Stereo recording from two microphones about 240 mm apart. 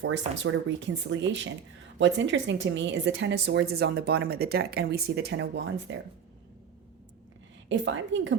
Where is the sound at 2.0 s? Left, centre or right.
Right.